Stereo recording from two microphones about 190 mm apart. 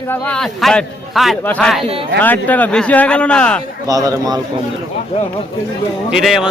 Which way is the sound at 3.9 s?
20° right (ahead or behind).